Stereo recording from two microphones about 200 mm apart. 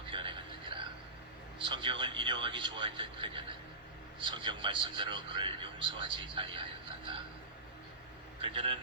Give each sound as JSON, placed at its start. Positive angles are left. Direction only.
{"t": 0.1, "sound": "a sound", "side_deg": -25}
{"t": 1.6, "sound": "speech", "side_deg": -25}
{"t": 8.4, "sound": "speech", "side_deg": -25}